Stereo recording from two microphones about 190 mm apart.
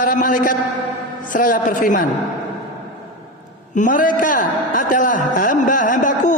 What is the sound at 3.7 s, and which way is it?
A man's voice, 45° left (ahead or behind).